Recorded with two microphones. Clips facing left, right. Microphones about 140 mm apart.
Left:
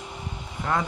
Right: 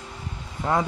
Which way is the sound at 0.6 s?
15° right (ahead or behind).